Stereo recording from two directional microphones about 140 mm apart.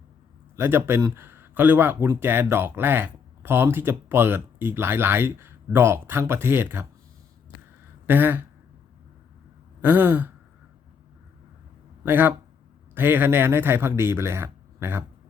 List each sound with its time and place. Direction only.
0.5 s speech: 15° right (ahead or behind)
8.0 s speech: 15° right (ahead or behind)
9.8 s speech: 15° right (ahead or behind)
12.0 s speech: 15° right (ahead or behind)